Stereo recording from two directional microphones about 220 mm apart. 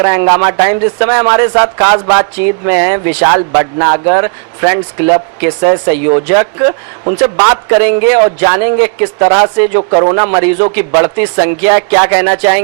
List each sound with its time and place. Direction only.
0.0 s speech: 15° right (ahead or behind)
7.0 s a man's voice: 30° right (ahead or behind)
7.3 s speech: 15° right (ahead or behind)
9.9 s a man's voice: 30° right (ahead or behind)
10.2 s speech: 15° right (ahead or behind)